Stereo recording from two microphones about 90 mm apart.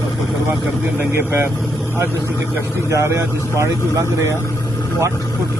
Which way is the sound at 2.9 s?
30° right (ahead or behind).